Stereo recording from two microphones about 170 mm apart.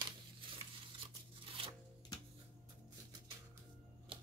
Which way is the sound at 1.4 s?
30° right (ahead or behind).